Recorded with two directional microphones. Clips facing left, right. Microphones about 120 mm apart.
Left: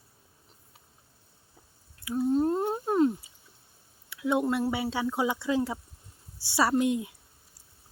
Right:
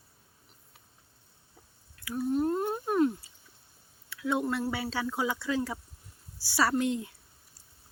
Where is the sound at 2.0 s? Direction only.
25° left (ahead or behind).